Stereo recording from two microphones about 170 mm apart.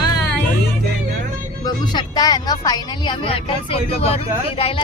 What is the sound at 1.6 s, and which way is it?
Speech, 25° left (ahead or behind).